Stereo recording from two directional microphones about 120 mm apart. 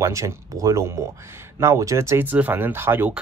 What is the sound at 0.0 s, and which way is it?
Speech, 25° right (ahead or behind).